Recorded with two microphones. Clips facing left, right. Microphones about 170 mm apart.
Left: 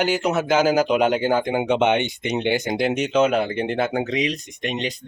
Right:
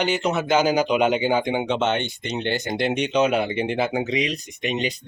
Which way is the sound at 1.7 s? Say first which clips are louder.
Left 4 dB; 15° left (ahead or behind).